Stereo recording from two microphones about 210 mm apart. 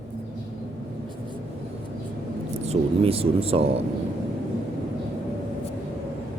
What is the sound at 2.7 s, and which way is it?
Speech, 30° right (ahead or behind).